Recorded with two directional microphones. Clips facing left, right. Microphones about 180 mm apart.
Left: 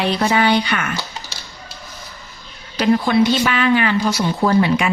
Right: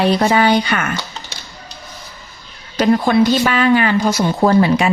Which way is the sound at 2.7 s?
45° right (ahead or behind).